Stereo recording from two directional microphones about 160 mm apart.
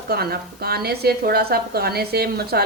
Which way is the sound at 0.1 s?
75° right (ahead or behind).